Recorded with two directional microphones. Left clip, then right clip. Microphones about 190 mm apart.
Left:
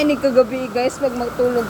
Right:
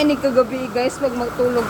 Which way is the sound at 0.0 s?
10° left (ahead or behind).